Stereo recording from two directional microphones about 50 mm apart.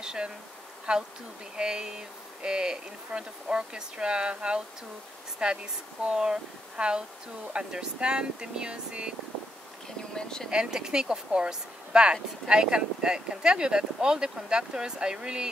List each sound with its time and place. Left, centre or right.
0.0 s bee: centre
0.9 s speech: centre
10.1 s speech: centre
10.5 s speech: centre